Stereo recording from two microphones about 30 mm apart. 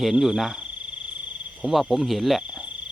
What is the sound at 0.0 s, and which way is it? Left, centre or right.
Speech, centre.